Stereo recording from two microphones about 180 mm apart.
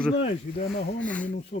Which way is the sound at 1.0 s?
10° left (ahead or behind).